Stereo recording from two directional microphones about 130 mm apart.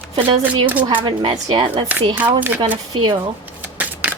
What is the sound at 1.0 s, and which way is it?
Speech, 35° right (ahead or behind).